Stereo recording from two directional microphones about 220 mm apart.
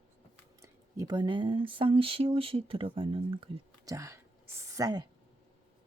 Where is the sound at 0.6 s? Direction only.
15° right (ahead or behind).